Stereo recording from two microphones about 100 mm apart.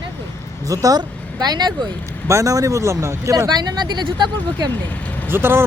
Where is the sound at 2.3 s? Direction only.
35° right (ahead or behind).